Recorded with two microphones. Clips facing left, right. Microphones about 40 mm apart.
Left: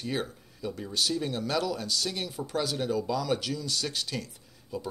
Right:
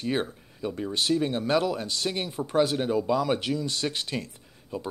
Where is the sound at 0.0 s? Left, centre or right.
Right.